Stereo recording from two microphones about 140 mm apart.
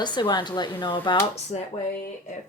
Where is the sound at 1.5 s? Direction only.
50° left (ahead or behind).